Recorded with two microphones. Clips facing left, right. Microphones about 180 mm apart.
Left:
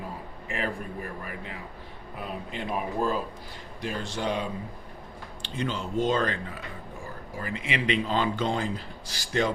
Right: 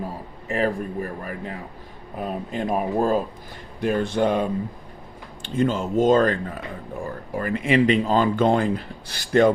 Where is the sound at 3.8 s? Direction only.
55° right (ahead or behind).